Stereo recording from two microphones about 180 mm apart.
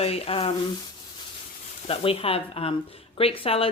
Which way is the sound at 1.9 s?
30° left (ahead or behind).